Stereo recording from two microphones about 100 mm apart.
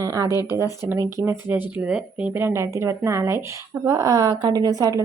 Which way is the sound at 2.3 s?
25° right (ahead or behind).